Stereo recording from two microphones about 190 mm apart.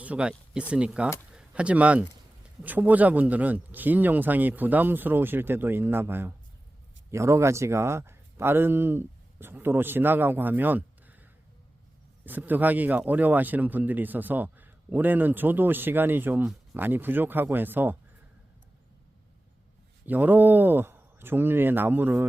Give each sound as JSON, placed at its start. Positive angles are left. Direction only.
{"t": 0.0, "sound": "speech", "side_deg": -5}
{"t": 20.1, "sound": "speech", "side_deg": -10}